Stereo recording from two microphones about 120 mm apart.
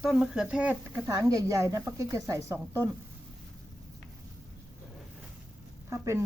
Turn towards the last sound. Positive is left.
turn(degrees=-25)  # may be behind; listen again after turning